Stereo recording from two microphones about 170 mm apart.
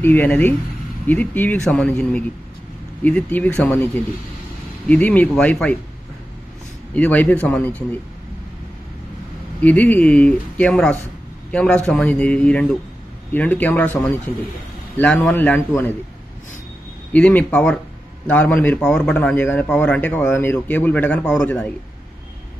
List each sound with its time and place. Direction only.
0.0 s a man's voice: 10° left (ahead or behind)
7.0 s a man's voice: 10° left (ahead or behind)
9.6 s a man's voice: 10° left (ahead or behind)
17.1 s a man's voice: 10° left (ahead or behind)